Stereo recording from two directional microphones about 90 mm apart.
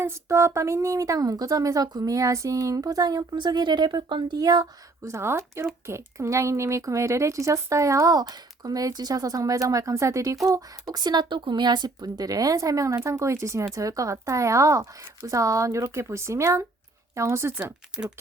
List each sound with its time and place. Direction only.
0.0 s speech: 30° right (ahead or behind)
17.5 s speech: 10° right (ahead or behind)